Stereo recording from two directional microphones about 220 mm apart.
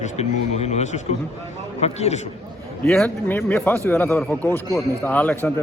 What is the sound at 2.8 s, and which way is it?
A man's voice, centre (ahead or behind).